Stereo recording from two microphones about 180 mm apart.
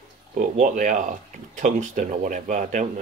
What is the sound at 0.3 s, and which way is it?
Speech, 45° right (ahead or behind).